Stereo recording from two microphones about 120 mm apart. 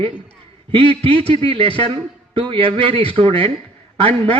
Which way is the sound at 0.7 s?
50° right (ahead or behind).